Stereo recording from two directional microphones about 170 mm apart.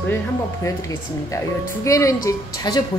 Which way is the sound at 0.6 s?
15° left (ahead or behind).